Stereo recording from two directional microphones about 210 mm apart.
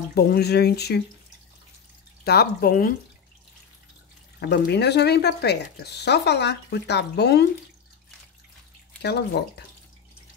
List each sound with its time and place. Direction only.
0.1 s speech: 50° left (ahead or behind)
2.2 s speech: 50° left (ahead or behind)
4.4 s speech: 50° left (ahead or behind)
9.0 s speech: 50° left (ahead or behind)